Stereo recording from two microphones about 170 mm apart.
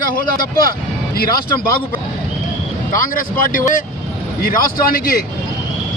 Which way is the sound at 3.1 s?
55° left (ahead or behind).